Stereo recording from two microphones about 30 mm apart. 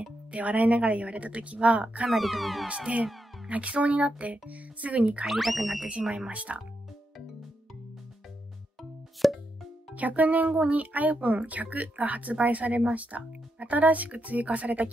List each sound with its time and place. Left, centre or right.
0.3 s a woman's voice: right
2.0 s speech: centre
3.4 s a woman's voice: right
5.2 s speech: centre
6.0 s speech: right
6.3 s a woman's voice: right
9.2 s plop: centre
9.9 s speech: right